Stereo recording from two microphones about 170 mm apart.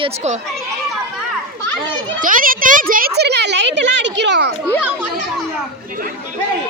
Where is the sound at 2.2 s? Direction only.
55° right (ahead or behind); by 4.5 s 90° right.